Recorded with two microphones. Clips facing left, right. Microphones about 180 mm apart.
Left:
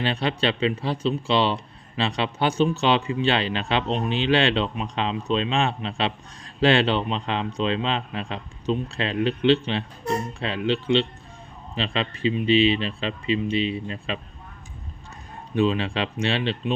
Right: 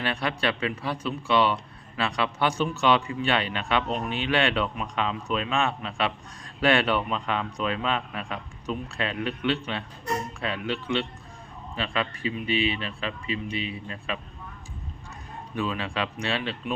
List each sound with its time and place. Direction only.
0.0 s a man's voice: 25° left (ahead or behind)
15.5 s a man's voice: 25° left (ahead or behind)